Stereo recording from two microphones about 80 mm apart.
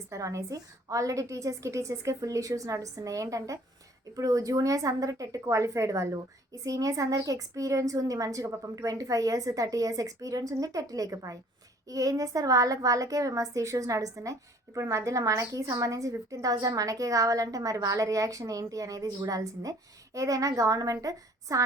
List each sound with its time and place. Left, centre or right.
0.1 s a woman's voice: right